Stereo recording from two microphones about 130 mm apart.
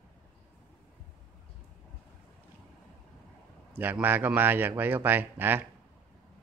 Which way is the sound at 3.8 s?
15° right (ahead or behind).